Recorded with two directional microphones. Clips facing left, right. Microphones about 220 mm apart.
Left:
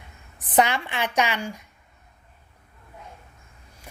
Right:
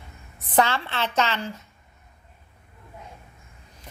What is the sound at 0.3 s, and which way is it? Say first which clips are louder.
A woman's voice: left 1 dB; 15° left (ahead or behind).